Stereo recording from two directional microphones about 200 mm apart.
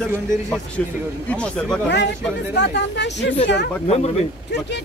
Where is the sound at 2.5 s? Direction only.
60° left (ahead or behind).